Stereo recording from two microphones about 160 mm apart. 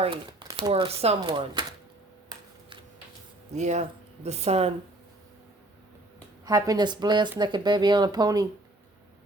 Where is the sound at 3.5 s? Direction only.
45° right (ahead or behind).